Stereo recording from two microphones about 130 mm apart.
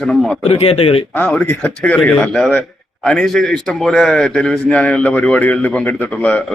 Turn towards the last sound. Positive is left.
turn(degrees=10)  # may be behind; listen again after turning